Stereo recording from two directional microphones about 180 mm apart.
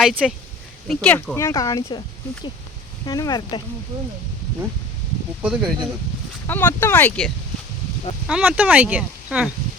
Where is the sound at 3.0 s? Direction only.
20° left (ahead or behind).